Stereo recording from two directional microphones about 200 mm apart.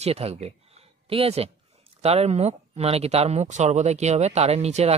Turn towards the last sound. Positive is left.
turn(degrees=-35)  # may be behind; listen again after turning